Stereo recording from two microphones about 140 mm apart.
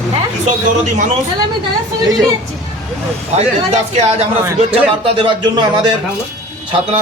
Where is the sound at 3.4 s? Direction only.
50° right (ahead or behind).